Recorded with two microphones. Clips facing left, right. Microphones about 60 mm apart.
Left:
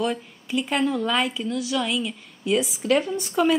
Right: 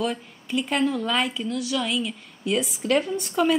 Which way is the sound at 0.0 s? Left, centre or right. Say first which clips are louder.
Left 1 dB; centre.